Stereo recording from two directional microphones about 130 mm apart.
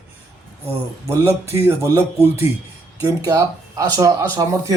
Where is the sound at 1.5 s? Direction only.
20° right (ahead or behind).